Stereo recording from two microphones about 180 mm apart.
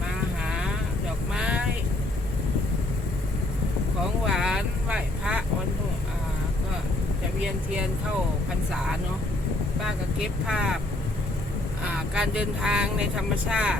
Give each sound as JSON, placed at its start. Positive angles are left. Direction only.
{"t": 1.3, "sound": "vehicle", "side_deg": -5}
{"t": 4.3, "sound": "vehicle", "side_deg": 0}
{"t": 9.8, "sound": "speech", "side_deg": -5}
{"t": 11.9, "sound": "speech", "side_deg": -5}